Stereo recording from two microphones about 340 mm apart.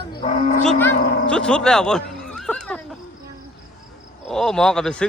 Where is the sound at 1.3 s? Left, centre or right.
Centre.